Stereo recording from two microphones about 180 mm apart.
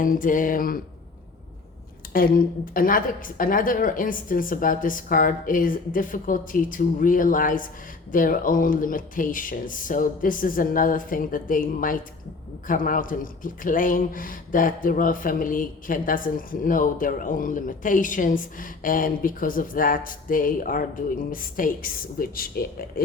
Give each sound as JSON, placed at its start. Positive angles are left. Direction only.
{"t": 0.0, "sound": "speech", "side_deg": 50}
{"t": 2.1, "sound": "speech", "side_deg": 55}